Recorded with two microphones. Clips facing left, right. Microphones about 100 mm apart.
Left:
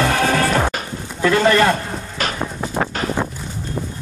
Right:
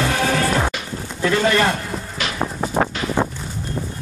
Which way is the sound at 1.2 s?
45° left (ahead or behind).